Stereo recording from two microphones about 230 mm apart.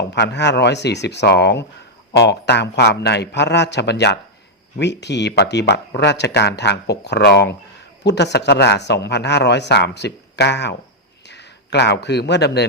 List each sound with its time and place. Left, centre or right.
0.1 s a man's voice: left